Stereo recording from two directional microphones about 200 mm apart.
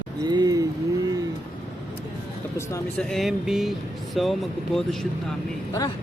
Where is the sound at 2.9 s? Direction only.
Centre (ahead or behind).